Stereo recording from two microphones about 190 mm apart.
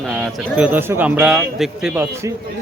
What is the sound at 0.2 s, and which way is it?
Speech, 5° right (ahead or behind).